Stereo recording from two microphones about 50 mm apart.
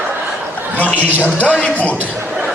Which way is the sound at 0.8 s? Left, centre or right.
Left.